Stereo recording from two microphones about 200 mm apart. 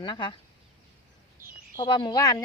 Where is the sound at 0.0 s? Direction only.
25° left (ahead or behind).